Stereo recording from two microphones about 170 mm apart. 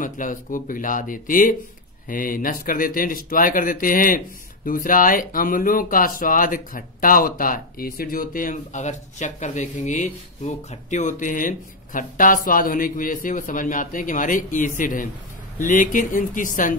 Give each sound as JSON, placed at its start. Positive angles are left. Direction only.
{"t": 0.0, "sound": "speech", "side_deg": 50}